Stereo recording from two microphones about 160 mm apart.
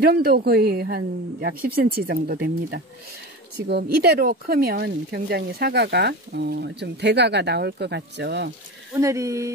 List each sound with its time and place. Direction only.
0.0 s a woman's voice: 75° right (ahead or behind)
3.5 s speech: 85° right
8.9 s speech: 20° right (ahead or behind)